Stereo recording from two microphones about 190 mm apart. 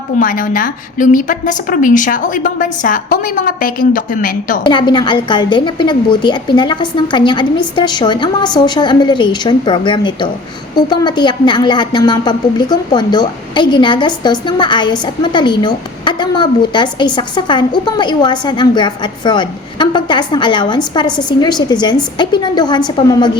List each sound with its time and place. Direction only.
0.2 s a woman's voice: 45° left (ahead or behind)
4.6 s a woman's voice: 25° left (ahead or behind)